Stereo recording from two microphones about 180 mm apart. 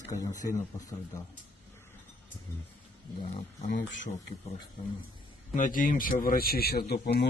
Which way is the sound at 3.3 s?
45° left (ahead or behind).